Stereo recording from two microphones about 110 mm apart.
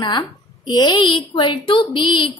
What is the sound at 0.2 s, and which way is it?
A woman's voice, 40° left (ahead or behind).